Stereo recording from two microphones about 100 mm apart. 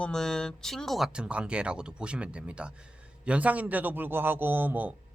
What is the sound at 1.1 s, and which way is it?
Speech, 10° right (ahead or behind).